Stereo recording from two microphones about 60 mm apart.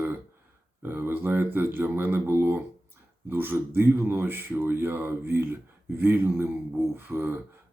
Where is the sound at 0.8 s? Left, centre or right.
Right.